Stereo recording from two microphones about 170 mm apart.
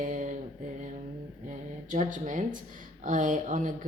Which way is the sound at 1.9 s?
50° right (ahead or behind).